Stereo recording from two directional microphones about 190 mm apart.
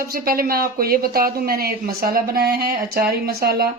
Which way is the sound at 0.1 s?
50° right (ahead or behind).